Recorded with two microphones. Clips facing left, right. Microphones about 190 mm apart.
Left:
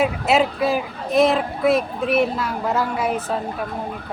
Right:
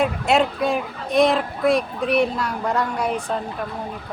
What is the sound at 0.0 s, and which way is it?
Speech, 5° left (ahead or behind).